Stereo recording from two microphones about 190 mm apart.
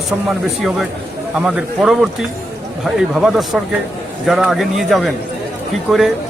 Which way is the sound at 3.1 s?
Centre (ahead or behind).